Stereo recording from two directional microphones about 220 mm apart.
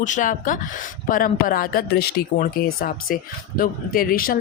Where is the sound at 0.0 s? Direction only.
35° left (ahead or behind).